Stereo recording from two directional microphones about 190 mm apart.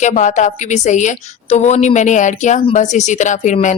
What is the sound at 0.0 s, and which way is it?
Speech, 40° left (ahead or behind).